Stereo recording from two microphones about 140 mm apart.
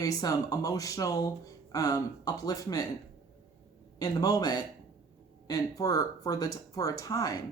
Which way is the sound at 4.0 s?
30° left (ahead or behind).